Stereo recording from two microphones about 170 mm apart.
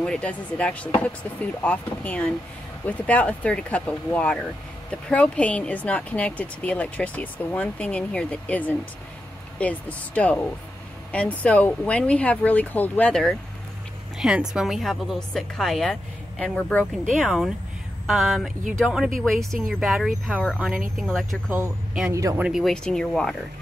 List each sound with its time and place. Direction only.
0.0 s a woman's voice: 5° left (ahead or behind)
22.1 s speech: 20° right (ahead or behind)
22.4 s a woman's voice: centre (ahead or behind)